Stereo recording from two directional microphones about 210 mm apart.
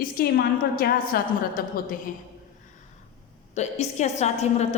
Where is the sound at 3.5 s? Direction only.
30° left (ahead or behind).